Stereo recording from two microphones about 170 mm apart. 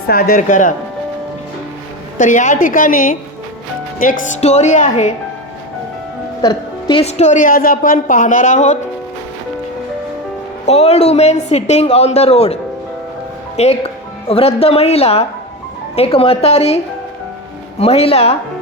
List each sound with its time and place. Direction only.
0.1 s a woman's voice: 60° left (ahead or behind)
2.1 s a woman's voice: 50° left (ahead or behind)
4.4 s a woman's voice: 40° left (ahead or behind)
6.4 s music: 25° left (ahead or behind)
7.0 s a woman's voice: 40° left (ahead or behind)
10.7 s a woman's voice: 40° left (ahead or behind)
13.6 s a woman's voice: 35° left (ahead or behind)